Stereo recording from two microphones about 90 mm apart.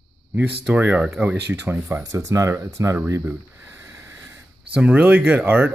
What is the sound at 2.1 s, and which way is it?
Speech, 35° right (ahead or behind).